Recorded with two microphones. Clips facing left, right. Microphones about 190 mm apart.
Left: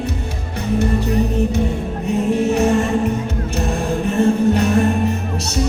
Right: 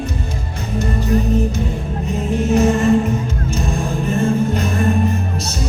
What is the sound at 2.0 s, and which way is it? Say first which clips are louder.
Music: left 2 dB; 65° left (ahead or behind).